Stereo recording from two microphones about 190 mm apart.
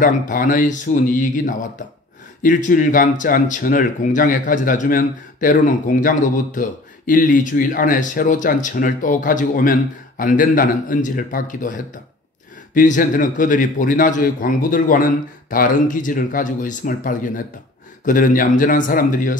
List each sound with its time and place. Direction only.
0.0 s speech: 45° left (ahead or behind)